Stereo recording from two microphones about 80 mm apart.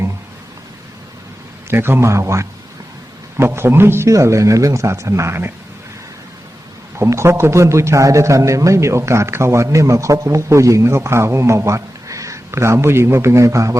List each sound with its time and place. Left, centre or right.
1.7 s a man's voice: right
7.0 s a man's voice: right